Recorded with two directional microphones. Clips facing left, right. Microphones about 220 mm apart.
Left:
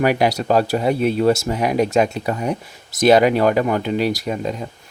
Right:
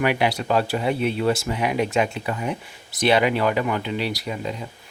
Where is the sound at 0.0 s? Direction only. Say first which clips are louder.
Left 4 dB; 40° left (ahead or behind).